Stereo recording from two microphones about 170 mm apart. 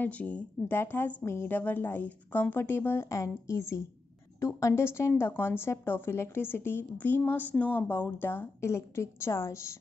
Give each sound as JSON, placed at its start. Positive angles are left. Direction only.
{"t": 0.0, "sound": "speech", "side_deg": 10}